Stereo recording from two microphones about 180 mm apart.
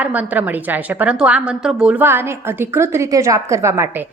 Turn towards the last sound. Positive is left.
turn(degrees=-15)  # may be behind; listen again after turning